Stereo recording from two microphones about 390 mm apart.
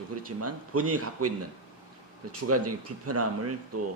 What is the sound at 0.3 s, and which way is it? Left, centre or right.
Speech, right.